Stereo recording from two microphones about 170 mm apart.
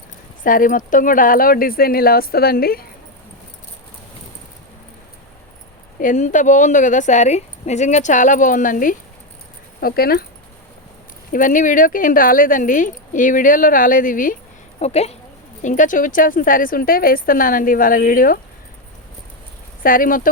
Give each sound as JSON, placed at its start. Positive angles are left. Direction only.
{"t": 0.4, "sound": "speech", "side_deg": 55}
{"t": 6.0, "sound": "speech", "side_deg": 50}
{"t": 11.3, "sound": "speech", "side_deg": 50}
{"t": 14.8, "sound": "a woman's voice", "side_deg": 40}
{"t": 19.8, "sound": "speech", "side_deg": 55}